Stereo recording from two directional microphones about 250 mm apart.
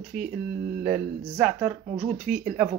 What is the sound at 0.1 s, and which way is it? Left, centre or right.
Mantra, right.